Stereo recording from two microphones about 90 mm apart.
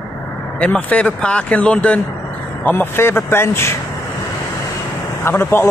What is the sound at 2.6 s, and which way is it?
Speech, 25° left (ahead or behind).